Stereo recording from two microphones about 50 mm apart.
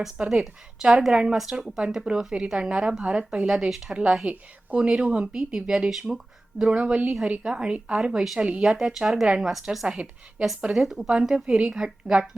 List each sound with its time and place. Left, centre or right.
0.2 s a woman's voice: right
0.8 s a woman's voice: centre
8.8 s a woman's voice: centre
9.8 s a woman's voice: centre